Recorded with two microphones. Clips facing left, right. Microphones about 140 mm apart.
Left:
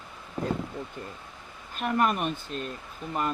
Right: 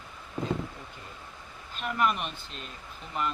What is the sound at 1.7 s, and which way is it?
Speech, 45° left (ahead or behind).